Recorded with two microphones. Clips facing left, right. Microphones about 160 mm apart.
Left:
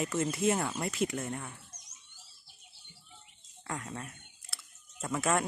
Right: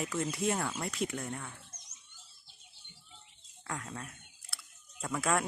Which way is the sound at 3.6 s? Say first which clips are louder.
Left 2 dB; centre (ahead or behind).